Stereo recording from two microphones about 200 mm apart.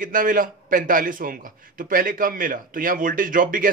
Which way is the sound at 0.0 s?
45° right (ahead or behind).